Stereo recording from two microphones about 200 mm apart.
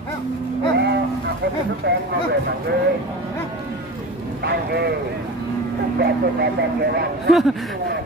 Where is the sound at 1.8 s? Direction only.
55° right (ahead or behind).